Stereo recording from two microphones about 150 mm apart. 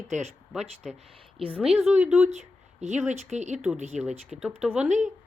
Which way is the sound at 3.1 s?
50° right (ahead or behind).